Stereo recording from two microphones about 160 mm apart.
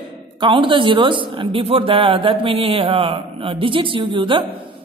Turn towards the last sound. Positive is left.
turn(degrees=-30)  # may be behind; listen again after turning